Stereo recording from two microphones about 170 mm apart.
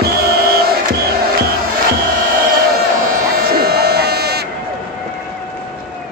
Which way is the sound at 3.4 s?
65° right (ahead or behind).